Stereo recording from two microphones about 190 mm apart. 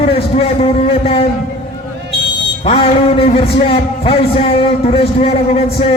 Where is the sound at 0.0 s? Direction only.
30° left (ahead or behind).